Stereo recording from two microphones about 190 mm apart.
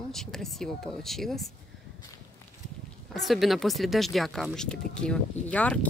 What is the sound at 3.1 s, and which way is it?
Speech, centre (ahead or behind).